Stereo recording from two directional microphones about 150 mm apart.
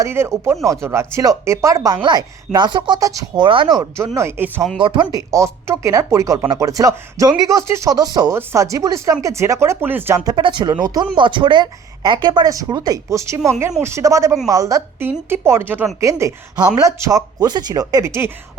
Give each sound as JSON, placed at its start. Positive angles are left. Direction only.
{"t": 0.0, "sound": "speech", "side_deg": -20}
{"t": 4.8, "sound": "speech", "side_deg": -35}
{"t": 5.1, "sound": "speech", "side_deg": -20}
{"t": 10.2, "sound": "speech", "side_deg": -30}